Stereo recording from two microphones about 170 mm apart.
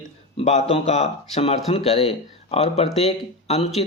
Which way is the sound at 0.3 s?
40° left (ahead or behind).